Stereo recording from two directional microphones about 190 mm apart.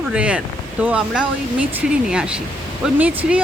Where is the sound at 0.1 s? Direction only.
5° right (ahead or behind).